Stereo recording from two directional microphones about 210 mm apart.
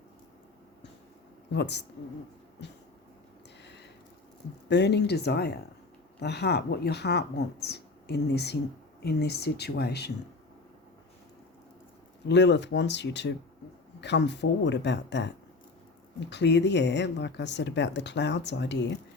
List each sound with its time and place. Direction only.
1.5 s speech: 55° left (ahead or behind)
4.7 s speech: 55° left (ahead or behind)
12.3 s speech: 55° left (ahead or behind)
16.3 s speech: 55° left (ahead or behind)